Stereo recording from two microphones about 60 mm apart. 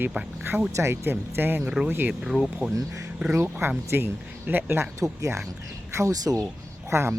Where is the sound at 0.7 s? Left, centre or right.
Right.